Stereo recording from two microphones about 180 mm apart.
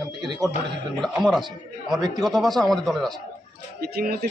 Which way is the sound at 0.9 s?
Centre (ahead or behind).